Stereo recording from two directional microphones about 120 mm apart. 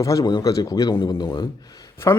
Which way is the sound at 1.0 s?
40° left (ahead or behind).